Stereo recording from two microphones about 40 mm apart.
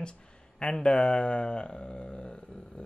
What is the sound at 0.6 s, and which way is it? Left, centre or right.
Speech, left.